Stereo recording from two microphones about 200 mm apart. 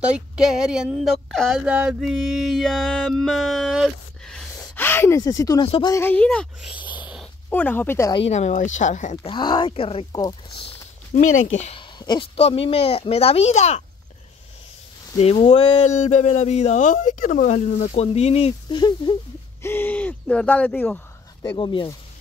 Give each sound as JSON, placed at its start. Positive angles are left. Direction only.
{"t": 0.0, "sound": "a sound", "side_deg": -5}
{"t": 5.7, "sound": "speech", "side_deg": 25}
{"t": 5.9, "sound": "speech", "side_deg": 10}
{"t": 6.9, "sound": "a sound", "side_deg": -5}
{"t": 7.4, "sound": "speech", "side_deg": 5}
{"t": 8.2, "sound": "speech", "side_deg": 35}
{"t": 11.1, "sound": "speech", "side_deg": 40}
{"t": 15.1, "sound": "speech", "side_deg": 30}
{"t": 19.6, "sound": "speech", "side_deg": 10}
{"t": 21.5, "sound": "speech", "side_deg": 25}